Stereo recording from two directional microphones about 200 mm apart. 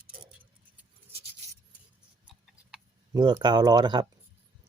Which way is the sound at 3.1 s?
20° right (ahead or behind).